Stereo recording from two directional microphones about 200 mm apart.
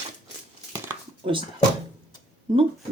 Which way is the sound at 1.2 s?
25° right (ahead or behind).